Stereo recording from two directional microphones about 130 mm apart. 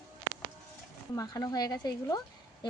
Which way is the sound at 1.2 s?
30° left (ahead or behind).